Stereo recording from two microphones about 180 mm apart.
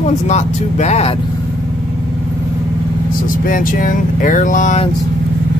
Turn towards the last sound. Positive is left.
turn(degrees=40)  # may be behind; listen again after turning